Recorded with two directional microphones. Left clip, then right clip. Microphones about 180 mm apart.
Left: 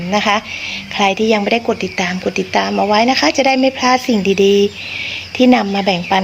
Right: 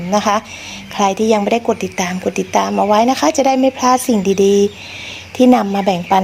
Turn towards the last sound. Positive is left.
turn(degrees=-35)  # may be behind; listen again after turning